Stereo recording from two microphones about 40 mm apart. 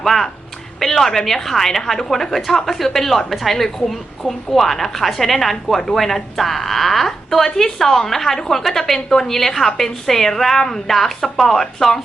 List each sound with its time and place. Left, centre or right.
0.0 s a woman's voice: centre